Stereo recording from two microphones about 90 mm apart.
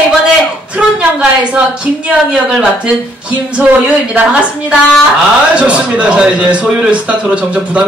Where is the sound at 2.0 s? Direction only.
10° right (ahead or behind).